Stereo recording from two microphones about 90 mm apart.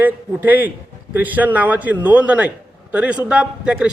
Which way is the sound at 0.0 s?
20° right (ahead or behind).